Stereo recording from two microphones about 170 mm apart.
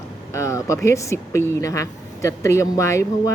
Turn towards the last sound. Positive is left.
turn(degrees=15)  # may be behind; listen again after turning